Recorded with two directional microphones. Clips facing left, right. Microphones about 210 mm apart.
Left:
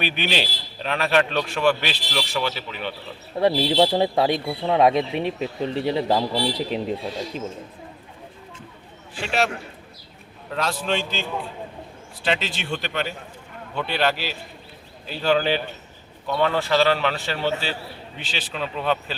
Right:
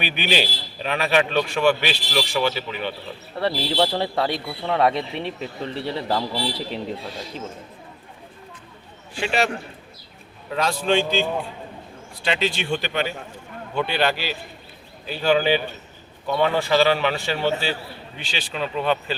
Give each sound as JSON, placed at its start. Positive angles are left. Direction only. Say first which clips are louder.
{"t": 0.0, "sound": "a man's voice", "louder": "right 1 dB", "side_deg": -5}
{"t": 3.3, "sound": "a man's voice", "louder": "left 4 dB", "side_deg": 15}
{"t": 9.2, "sound": "a man's voice", "louder": "right 1 dB", "side_deg": 0}
{"t": 10.5, "sound": "a man's voice", "louder": "right 4 dB", "side_deg": 0}
{"t": 12.2, "sound": "a man's voice", "louder": "right 2 dB", "side_deg": 0}